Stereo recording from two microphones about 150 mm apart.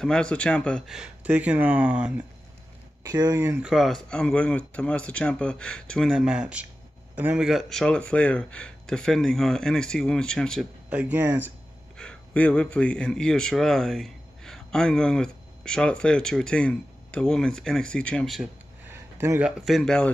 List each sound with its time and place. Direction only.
0.0 s a man's voice: 5° left (ahead or behind)
3.0 s speech: 20° right (ahead or behind)
3.6 s a man's voice: centre (ahead or behind)
10.9 s speech: 10° right (ahead or behind)
12.0 s a man's voice: 5° left (ahead or behind)
18.9 s a sound: 15° right (ahead or behind)
19.6 s a man's voice: centre (ahead or behind)